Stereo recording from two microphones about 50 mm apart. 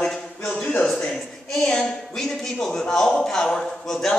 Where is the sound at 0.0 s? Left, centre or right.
Centre.